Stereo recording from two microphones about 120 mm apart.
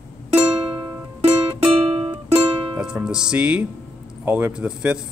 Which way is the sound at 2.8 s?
5° right (ahead or behind).